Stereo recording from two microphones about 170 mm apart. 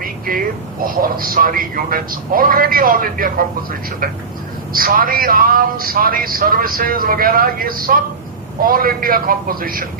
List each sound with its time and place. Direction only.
0.0 s a man's voice: 55° right (ahead or behind)